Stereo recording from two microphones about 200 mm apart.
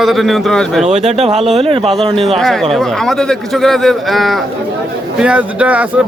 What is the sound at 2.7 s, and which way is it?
A man's voice, centre (ahead or behind).